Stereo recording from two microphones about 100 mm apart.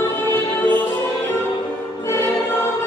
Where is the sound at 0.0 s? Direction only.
20° left (ahead or behind).